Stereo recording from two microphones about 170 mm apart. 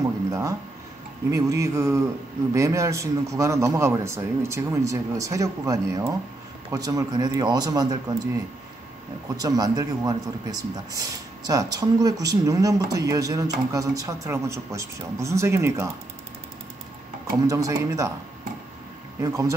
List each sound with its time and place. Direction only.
0.3 s a man's voice: 20° right (ahead or behind)
9.4 s a man's voice: 20° right (ahead or behind)
17.5 s a man's voice: 20° right (ahead or behind)
19.2 s a man's voice: 20° right (ahead or behind)